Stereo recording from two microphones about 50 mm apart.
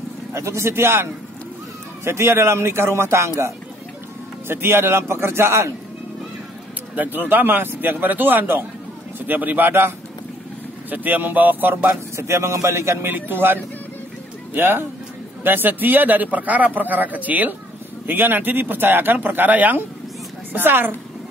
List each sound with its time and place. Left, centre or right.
0.3 s a man's voice: right
4.5 s a man's voice: right
7.0 s a man's voice: right
9.7 s a man's voice: right
10.9 s a man's voice: right
12.3 s a man's voice: right
13.0 s a man's voice: right